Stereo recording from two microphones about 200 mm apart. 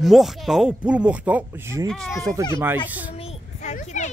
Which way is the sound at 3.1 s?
35° left (ahead or behind).